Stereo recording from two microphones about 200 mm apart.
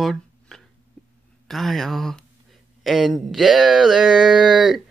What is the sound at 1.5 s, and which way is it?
Wail, centre (ahead or behind).